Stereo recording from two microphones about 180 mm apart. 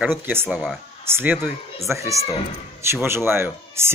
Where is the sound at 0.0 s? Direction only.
10° right (ahead or behind).